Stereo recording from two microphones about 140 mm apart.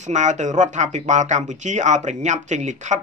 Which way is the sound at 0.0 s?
60° right (ahead or behind).